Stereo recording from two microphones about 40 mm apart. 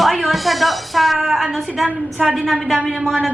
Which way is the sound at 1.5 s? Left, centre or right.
Centre.